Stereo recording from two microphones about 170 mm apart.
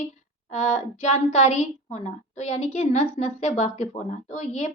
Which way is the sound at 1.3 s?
40° left (ahead or behind).